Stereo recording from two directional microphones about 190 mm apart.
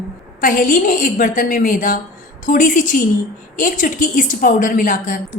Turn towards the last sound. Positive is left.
turn(degrees=45)  # may be behind; listen again after turning